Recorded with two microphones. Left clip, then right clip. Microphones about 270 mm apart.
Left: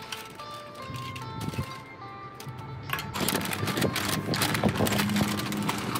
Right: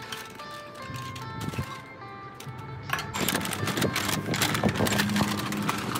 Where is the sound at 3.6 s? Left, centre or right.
Centre.